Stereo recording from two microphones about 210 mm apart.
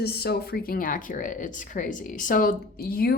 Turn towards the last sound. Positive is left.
turn(degrees=45)  # may be behind; listen again after turning